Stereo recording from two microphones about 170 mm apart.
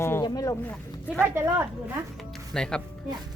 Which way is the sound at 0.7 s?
10° left (ahead or behind).